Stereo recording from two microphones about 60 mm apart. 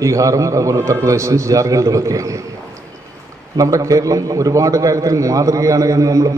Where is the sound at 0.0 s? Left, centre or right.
Right.